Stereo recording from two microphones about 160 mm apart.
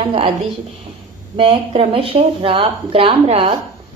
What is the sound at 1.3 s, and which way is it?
Speech, 35° right (ahead or behind).